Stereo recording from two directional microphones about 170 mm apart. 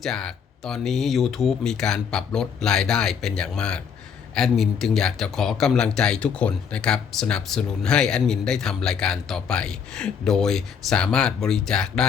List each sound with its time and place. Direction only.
0.0 s speech: 5° left (ahead or behind)